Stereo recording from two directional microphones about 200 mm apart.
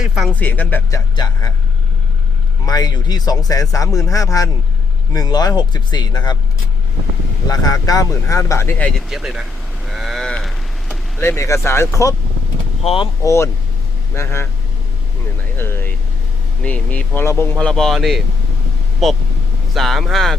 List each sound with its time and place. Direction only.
0.0 s speech: centre (ahead or behind); by 1.5 s 20° left (ahead or behind)
2.6 s a man's voice: 20° left (ahead or behind)
7.4 s speech: 20° left (ahead or behind)
9.0 s cattle: centre (ahead or behind)
11.2 s speech: 15° left (ahead or behind)
12.8 s speech: 30° left (ahead or behind)
13.2 s speech: 15° left (ahead or behind)
15.5 s vehicle: 10° left (ahead or behind)
16.6 s speech: 5° left (ahead or behind)